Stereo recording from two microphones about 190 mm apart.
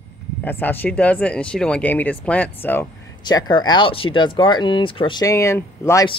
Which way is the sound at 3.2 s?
20° left (ahead or behind).